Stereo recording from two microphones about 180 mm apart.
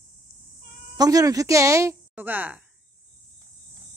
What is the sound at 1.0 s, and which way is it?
Speech, 20° right (ahead or behind).